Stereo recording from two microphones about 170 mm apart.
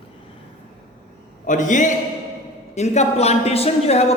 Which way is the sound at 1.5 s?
50° left (ahead or behind).